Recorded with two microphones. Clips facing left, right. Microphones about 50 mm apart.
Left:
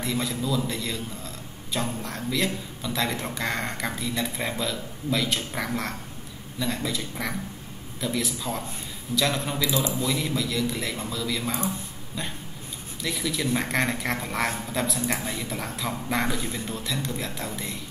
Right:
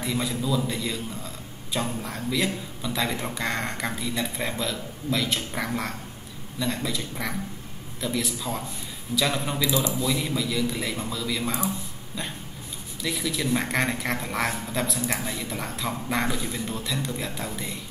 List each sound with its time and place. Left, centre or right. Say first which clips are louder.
0.0 s speech: even; centre
9.8 s speech: even; left
10.1 s speech: even; centre
13.0 s speech: even; centre